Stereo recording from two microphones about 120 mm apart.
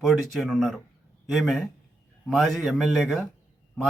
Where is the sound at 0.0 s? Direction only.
Centre (ahead or behind).